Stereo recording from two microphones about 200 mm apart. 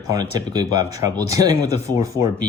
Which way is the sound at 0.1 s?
20° right (ahead or behind).